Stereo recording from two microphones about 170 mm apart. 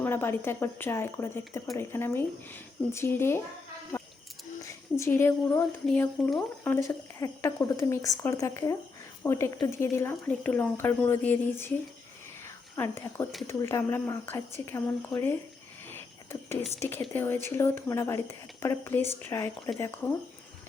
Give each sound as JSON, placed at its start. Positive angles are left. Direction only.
{"t": 0.0, "sound": "speech", "side_deg": 15}
{"t": 4.6, "sound": "a woman's voice", "side_deg": 15}
{"t": 12.7, "sound": "speech", "side_deg": 15}
{"t": 15.9, "sound": "a sound", "side_deg": 15}
{"t": 16.8, "sound": "speech", "side_deg": 15}